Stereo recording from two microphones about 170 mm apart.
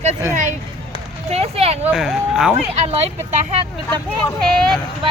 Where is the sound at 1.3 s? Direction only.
35° right (ahead or behind).